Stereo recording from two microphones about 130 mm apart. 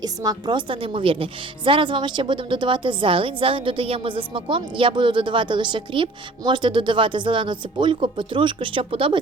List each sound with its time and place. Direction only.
0.0 s a woman's voice: 30° right (ahead or behind)